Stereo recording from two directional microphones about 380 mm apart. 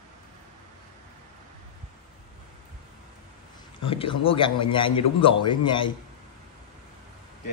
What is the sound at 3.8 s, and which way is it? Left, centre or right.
A man's voice, centre.